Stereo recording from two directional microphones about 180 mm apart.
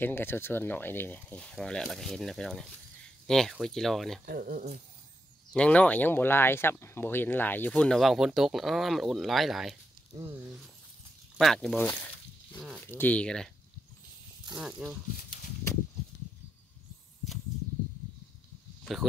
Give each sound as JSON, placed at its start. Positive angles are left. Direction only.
{"t": 0.0, "sound": "speech", "side_deg": 10}
{"t": 4.3, "sound": "speech", "side_deg": -55}
{"t": 5.5, "sound": "speech", "side_deg": 5}
{"t": 11.3, "sound": "speech", "side_deg": 0}
{"t": 14.6, "sound": "speech", "side_deg": -5}